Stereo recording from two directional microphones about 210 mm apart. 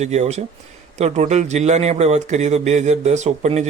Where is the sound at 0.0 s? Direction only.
30° right (ahead or behind).